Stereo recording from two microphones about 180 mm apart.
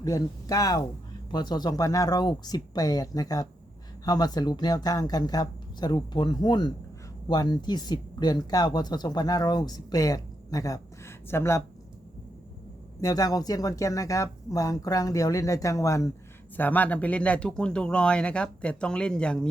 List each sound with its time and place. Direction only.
0.0 s speech: 20° left (ahead or behind)
13.0 s speech: 20° left (ahead or behind)